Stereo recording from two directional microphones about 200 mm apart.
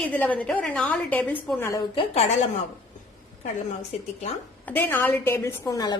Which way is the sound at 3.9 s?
35° left (ahead or behind).